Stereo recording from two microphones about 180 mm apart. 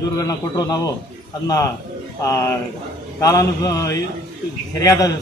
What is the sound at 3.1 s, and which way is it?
Speech, 20° left (ahead or behind).